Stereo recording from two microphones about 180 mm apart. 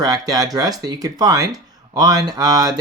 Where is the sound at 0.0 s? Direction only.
20° right (ahead or behind).